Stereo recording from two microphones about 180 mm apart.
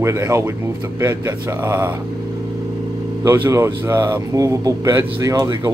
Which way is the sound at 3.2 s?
15° right (ahead or behind).